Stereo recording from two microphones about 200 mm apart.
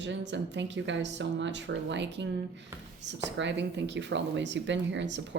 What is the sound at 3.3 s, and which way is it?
A woman's voice, 60° right (ahead or behind).